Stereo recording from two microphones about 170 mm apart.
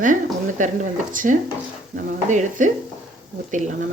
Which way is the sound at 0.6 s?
50° right (ahead or behind).